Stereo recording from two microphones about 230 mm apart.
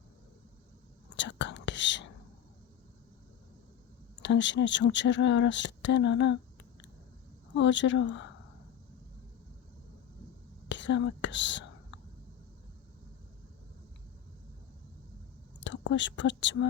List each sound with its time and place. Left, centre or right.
1.1 s whispering: left
4.2 s speech: left
7.5 s speech: left
10.7 s whispering: left
15.9 s speech: left